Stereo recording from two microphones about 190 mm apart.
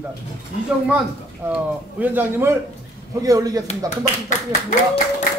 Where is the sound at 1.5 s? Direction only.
10° right (ahead or behind).